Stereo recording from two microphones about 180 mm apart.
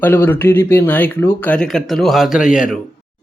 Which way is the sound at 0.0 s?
10° left (ahead or behind).